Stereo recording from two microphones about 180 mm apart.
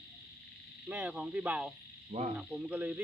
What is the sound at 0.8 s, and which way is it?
Speech, 5° right (ahead or behind).